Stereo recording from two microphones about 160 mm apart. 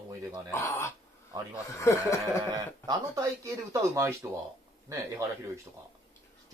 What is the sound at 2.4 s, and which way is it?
Speech, 25° right (ahead or behind).